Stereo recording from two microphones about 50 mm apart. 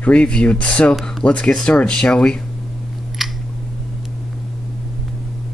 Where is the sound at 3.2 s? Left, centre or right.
Centre.